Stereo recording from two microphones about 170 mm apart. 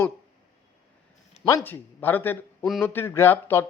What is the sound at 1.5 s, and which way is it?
Speech, 15° left (ahead or behind).